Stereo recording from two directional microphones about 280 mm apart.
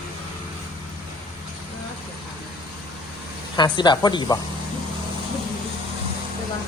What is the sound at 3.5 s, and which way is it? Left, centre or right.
Speech, centre.